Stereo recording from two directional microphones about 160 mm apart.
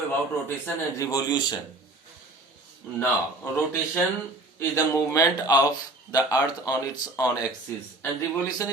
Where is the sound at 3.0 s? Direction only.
15° left (ahead or behind).